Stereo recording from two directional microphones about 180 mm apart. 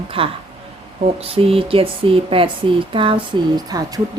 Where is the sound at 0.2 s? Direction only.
30° right (ahead or behind).